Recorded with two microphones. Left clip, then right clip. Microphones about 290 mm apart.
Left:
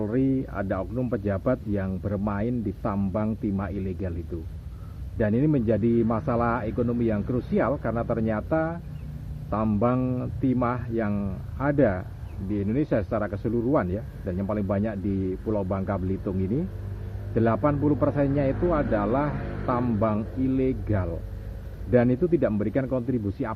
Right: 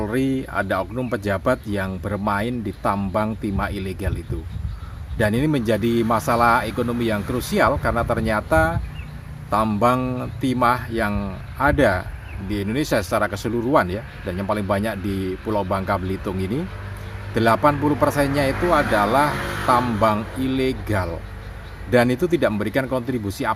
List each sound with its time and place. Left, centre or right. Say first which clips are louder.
0.5 s speech: right 7 dB; right
5.1 s speech: right 4 dB; right
17.3 s speech: right 7 dB; right